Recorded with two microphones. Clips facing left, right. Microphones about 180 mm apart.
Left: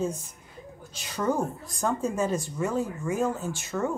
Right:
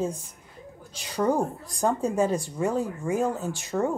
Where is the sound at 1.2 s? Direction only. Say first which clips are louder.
Right 3 dB; 35° right (ahead or behind).